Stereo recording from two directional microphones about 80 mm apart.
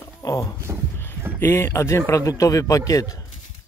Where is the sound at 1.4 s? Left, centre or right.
Left.